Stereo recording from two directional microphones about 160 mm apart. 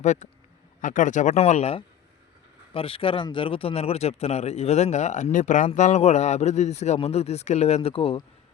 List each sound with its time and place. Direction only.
0.0 s a man's voice: 50° left (ahead or behind)